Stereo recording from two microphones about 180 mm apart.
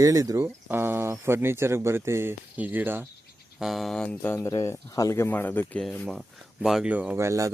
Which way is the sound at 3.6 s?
Centre (ahead or behind).